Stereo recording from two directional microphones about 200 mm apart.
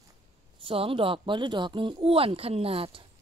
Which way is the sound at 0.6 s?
25° right (ahead or behind).